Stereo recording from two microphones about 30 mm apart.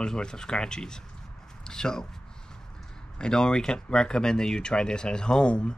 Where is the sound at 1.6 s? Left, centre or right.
Left.